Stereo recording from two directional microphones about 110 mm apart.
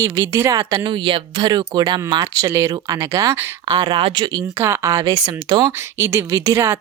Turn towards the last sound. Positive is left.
turn(degrees=-25)  # may be behind; listen again after turning